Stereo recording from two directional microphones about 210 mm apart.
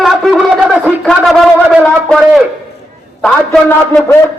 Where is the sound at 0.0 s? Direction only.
Centre (ahead or behind).